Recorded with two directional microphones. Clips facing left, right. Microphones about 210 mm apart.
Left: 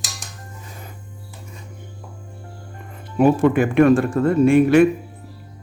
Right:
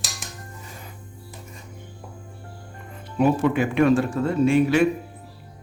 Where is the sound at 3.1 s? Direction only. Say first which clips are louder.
Left 5 dB; 50° left (ahead or behind).